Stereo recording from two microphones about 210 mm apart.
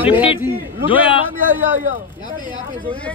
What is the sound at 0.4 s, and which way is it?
Speech, 10° right (ahead or behind).